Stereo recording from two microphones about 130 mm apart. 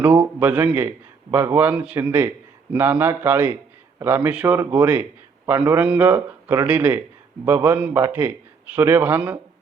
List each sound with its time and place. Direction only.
0.0 s a man's voice: 15° right (ahead or behind)